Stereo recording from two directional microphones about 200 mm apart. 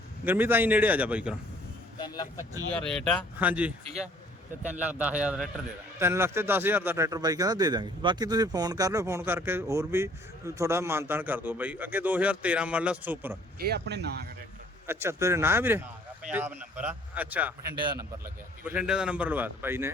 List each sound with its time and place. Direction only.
0.3 s speech: 10° right (ahead or behind)
2.0 s speech: 20° left (ahead or behind)
2.7 s speech: 5° left (ahead or behind)
3.3 s speech: 5° right (ahead or behind)
13.7 s speech: 55° right (ahead or behind)
14.8 s speech: 15° right (ahead or behind)